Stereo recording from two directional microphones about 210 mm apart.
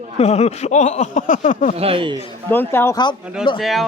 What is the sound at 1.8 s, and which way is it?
Speech, 25° right (ahead or behind).